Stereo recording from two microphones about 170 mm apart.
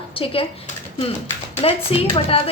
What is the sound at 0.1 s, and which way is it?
Speech, 30° left (ahead or behind).